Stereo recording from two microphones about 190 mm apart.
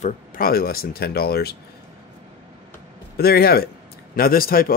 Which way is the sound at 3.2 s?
55° left (ahead or behind).